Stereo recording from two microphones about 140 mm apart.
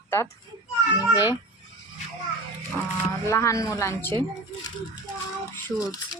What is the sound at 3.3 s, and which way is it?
Speech, 20° left (ahead or behind).